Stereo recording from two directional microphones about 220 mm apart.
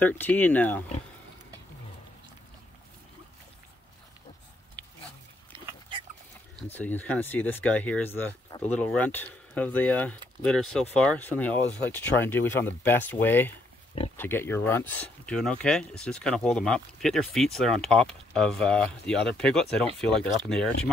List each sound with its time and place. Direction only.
0.0 s speech: 10° left (ahead or behind)
5.5 s pig: 25° right (ahead or behind)
6.7 s speech: 5° left (ahead or behind)